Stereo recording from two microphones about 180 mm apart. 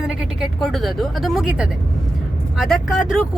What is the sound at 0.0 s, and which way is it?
Speech, 5° right (ahead or behind).